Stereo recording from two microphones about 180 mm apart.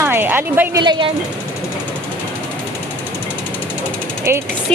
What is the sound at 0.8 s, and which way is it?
Speech, 25° right (ahead or behind).